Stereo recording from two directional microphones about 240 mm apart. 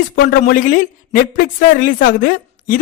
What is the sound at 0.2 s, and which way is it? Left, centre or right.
A man's voice, left.